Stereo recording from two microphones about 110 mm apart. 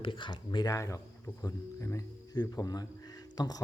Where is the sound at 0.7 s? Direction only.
30° left (ahead or behind).